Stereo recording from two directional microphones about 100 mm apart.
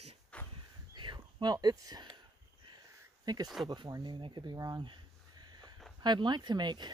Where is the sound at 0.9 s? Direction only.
50° right (ahead or behind).